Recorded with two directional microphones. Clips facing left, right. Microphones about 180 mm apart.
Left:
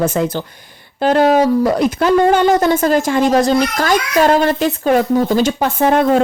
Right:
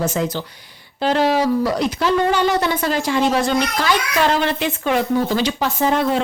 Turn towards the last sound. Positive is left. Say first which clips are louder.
# left 5 dB
turn(degrees=55)  # may be behind; listen again after turning